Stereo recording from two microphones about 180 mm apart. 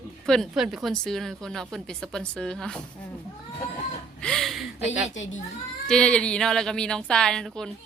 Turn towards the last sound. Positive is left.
turn(degrees=5)  # may be behind; listen again after turning